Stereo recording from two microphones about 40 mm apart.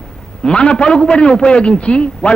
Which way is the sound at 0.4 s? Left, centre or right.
Left.